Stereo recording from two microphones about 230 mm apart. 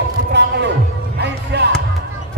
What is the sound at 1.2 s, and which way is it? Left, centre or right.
Music, right.